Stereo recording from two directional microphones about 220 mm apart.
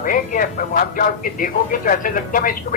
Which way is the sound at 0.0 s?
40° left (ahead or behind).